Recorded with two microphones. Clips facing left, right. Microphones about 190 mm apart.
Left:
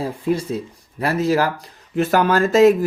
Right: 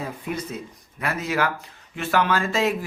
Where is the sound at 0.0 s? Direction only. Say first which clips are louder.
Left 8 dB; 30° left (ahead or behind).